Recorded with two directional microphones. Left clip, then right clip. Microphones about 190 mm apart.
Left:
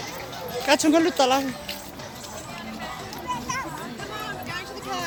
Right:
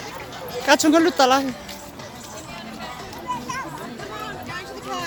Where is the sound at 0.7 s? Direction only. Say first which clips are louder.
Right 3 dB; 15° right (ahead or behind).